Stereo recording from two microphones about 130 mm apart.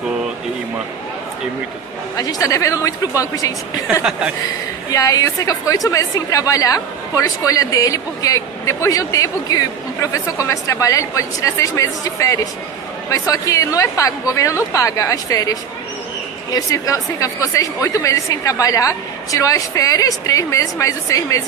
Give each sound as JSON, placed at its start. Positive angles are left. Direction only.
{"t": 2.1, "sound": "a woman's voice", "side_deg": 25}
{"t": 3.9, "sound": "speech", "side_deg": -10}
{"t": 4.9, "sound": "a woman's voice", "side_deg": 25}
{"t": 16.5, "sound": "a woman's voice", "side_deg": 25}